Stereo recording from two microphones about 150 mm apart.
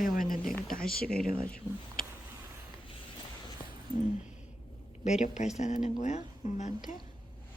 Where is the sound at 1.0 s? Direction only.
5° left (ahead or behind).